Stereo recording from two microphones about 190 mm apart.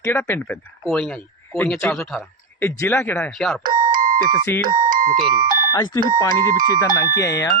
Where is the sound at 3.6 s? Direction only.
45° right (ahead or behind).